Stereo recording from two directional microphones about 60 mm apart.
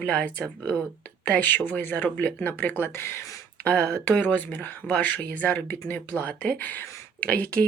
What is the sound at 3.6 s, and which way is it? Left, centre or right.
Speech, left.